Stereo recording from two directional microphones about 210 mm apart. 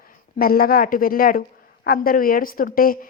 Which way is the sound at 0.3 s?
45° left (ahead or behind).